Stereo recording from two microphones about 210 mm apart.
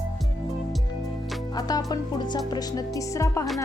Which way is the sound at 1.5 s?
15° left (ahead or behind).